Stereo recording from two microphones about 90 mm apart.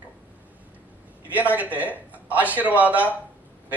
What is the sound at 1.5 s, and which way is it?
A man's voice, 15° right (ahead or behind).